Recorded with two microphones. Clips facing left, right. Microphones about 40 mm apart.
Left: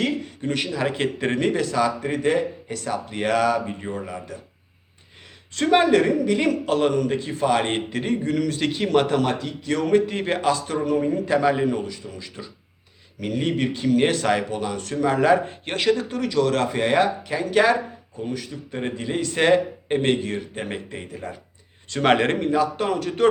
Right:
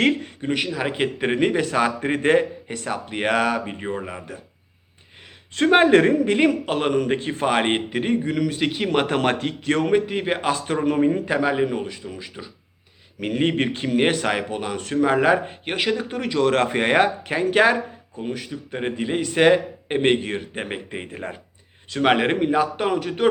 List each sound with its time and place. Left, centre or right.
0.4 s a man's voice: centre
1.6 s a man's voice: right
5.5 s a man's voice: right
9.0 s a man's voice: right
10.1 s a man's voice: centre
10.5 s a man's voice: right
11.3 s a man's voice: centre; by 21.3 s right
21.8 s a man's voice: centre
22.4 s a man's voice: right